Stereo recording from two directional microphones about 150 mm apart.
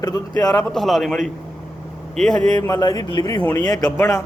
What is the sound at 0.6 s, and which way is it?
A man's voice, centre (ahead or behind).